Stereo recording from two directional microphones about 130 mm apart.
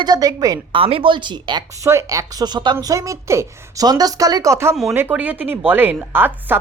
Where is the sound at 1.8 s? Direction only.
25° right (ahead or behind).